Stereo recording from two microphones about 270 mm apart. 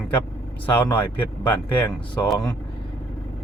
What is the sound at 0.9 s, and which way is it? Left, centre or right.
Speech, centre.